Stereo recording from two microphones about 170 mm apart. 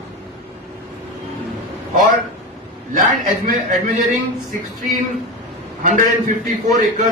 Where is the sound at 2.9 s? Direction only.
50° right (ahead or behind).